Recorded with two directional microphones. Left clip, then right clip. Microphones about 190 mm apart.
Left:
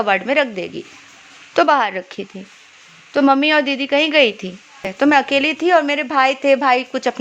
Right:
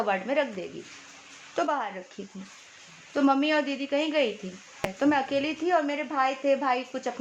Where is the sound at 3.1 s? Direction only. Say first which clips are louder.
Left 10 dB; 30° left (ahead or behind).